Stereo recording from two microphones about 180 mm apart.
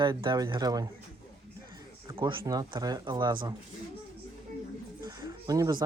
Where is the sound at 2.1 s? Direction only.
25° right (ahead or behind).